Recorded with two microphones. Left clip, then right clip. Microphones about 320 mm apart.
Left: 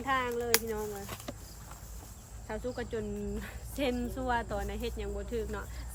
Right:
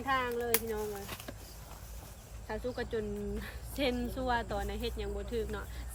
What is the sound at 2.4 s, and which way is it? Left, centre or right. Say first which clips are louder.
Speech: even; centre.